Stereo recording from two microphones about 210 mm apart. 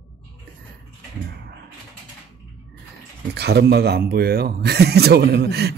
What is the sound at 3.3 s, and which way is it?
Speech, 50° right (ahead or behind).